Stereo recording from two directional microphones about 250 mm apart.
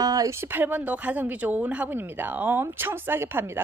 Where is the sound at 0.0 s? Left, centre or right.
Centre.